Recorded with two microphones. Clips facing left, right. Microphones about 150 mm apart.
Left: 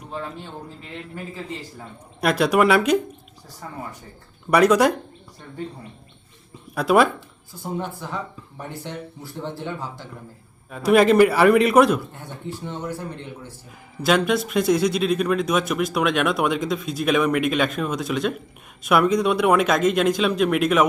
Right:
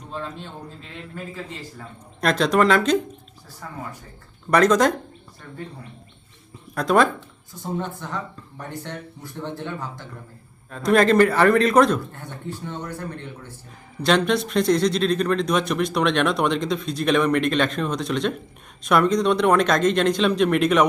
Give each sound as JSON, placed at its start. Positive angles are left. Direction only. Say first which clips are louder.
{"t": 0.1, "sound": "a man's voice", "louder": "even", "side_deg": 15}
{"t": 2.2, "sound": "a man's voice", "louder": "left 1 dB", "side_deg": 10}
{"t": 6.7, "sound": "a man's voice", "louder": "left 1 dB", "side_deg": 10}